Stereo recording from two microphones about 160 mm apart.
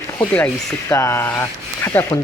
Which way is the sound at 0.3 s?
15° left (ahead or behind).